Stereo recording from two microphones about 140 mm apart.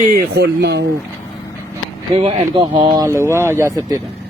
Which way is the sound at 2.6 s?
35° right (ahead or behind).